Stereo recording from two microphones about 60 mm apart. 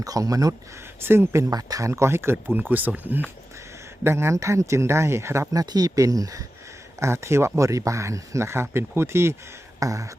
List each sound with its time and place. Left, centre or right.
0.0 s speech: right
1.0 s speech: right
1.5 s speech: right
1.9 s speech: right
2.6 s speech: right
4.0 s speech: right
5.5 s speech: right
7.0 s speech: right
9.8 s speech: right